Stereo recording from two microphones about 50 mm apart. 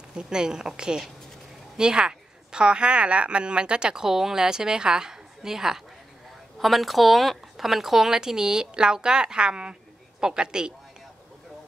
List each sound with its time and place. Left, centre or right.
0.1 s a woman's voice: centre